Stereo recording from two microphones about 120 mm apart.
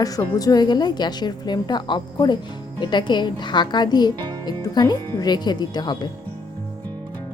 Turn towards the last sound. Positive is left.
turn(degrees=35)  # may be behind; listen again after turning